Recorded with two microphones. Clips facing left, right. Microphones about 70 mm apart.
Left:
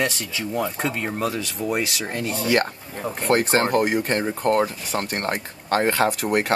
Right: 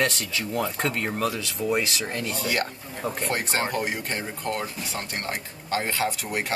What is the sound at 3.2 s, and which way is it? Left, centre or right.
Speech, left.